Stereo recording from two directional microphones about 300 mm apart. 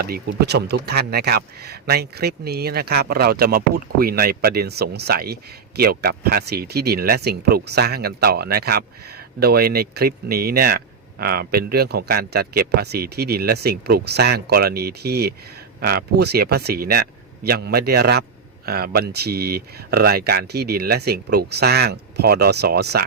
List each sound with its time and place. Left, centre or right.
0.0 s speech: right